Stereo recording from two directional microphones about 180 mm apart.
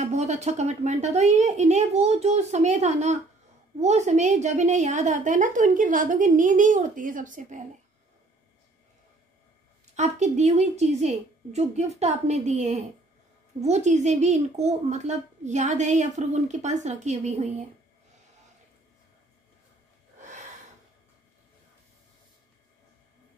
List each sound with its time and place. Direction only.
0.0 s a woman's voice: 40° right (ahead or behind)
9.9 s speech: 40° right (ahead or behind)
20.2 s gasp: 45° right (ahead or behind)